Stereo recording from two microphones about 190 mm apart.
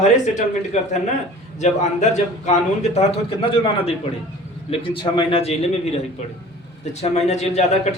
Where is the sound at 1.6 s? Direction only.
35° left (ahead or behind).